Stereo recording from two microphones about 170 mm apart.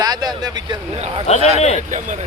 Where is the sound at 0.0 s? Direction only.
25° right (ahead or behind).